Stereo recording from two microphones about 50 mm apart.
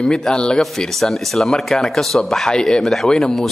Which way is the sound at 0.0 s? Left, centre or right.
Centre.